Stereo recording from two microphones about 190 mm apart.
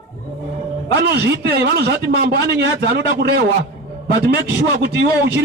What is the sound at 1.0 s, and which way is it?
A man's voice, 60° right (ahead or behind).